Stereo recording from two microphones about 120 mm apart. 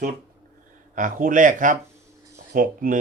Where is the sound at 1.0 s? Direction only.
90° right.